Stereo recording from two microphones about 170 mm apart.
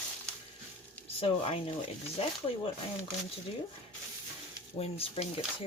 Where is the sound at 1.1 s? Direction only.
35° left (ahead or behind).